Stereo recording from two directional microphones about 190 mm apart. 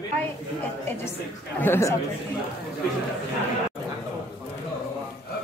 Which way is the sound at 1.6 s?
15° left (ahead or behind).